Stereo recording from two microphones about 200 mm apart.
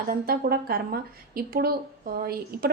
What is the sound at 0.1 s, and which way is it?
A woman's voice, 50° right (ahead or behind).